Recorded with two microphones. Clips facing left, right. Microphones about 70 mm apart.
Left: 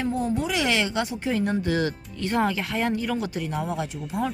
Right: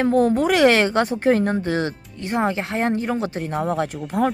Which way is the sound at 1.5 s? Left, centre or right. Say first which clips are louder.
Right 2 dB; right.